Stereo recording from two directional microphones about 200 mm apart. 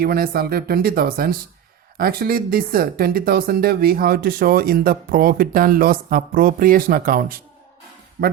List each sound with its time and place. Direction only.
0.0 s speech: 50° right (ahead or behind)